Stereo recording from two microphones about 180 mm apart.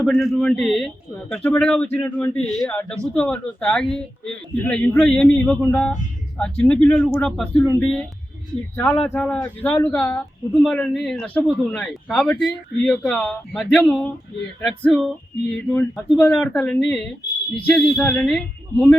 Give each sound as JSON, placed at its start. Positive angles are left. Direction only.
{"t": 0.0, "sound": "speech", "side_deg": 0}
{"t": 7.6, "sound": "speech", "side_deg": 15}
{"t": 15.5, "sound": "speech", "side_deg": 10}